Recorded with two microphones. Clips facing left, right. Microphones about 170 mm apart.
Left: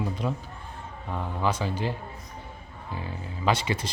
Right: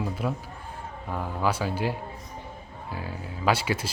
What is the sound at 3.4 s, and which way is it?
Speech, 5° right (ahead or behind).